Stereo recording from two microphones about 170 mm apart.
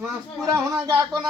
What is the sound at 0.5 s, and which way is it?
Speech, 25° right (ahead or behind).